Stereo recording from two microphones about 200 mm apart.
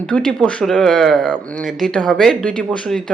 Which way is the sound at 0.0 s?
5° left (ahead or behind).